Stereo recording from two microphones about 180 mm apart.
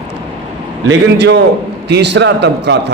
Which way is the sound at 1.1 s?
70° right (ahead or behind).